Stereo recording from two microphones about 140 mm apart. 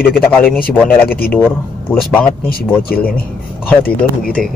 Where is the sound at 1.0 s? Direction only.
90° left.